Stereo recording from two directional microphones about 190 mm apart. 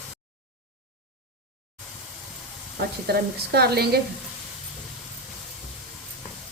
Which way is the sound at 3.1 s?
55° right (ahead or behind).